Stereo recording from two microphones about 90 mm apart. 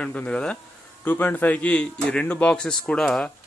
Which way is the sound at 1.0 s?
20° left (ahead or behind).